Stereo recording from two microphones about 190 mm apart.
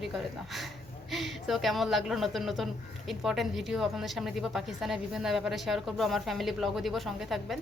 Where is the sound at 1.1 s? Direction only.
Centre (ahead or behind).